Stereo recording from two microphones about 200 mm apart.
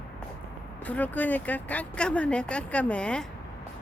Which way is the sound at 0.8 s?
10° left (ahead or behind).